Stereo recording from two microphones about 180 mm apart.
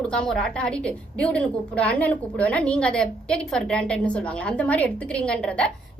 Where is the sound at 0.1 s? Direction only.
5° left (ahead or behind).